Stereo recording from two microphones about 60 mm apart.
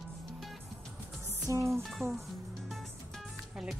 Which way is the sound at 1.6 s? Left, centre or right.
Centre.